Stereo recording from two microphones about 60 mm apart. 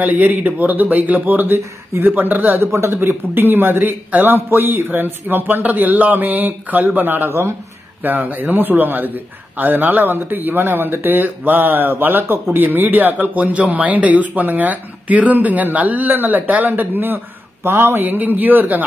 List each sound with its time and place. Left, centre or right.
0.0 s a man's voice: right
2.7 s a man's voice: right
17.6 s a sound: right
18.0 s a man's voice: right